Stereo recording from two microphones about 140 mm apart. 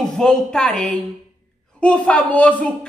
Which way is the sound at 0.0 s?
5° left (ahead or behind).